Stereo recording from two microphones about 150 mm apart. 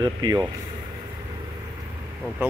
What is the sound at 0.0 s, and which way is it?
Speech, 30° right (ahead or behind).